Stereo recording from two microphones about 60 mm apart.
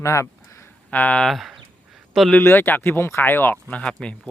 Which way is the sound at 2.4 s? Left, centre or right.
Left.